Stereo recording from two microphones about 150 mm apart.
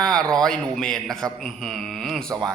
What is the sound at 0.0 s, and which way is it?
A man's voice, 5° left (ahead or behind).